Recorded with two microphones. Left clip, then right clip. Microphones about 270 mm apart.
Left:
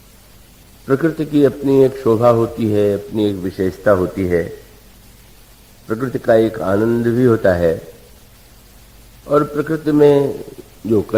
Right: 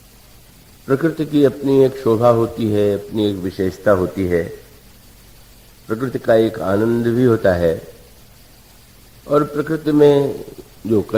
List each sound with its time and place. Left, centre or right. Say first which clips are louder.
0.9 s a man's voice: left 1 dB; left
5.9 s a man's voice: left 1 dB; left
9.2 s a man's voice: left 1 dB; left